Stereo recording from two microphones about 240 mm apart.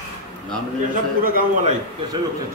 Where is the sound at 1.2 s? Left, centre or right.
Right.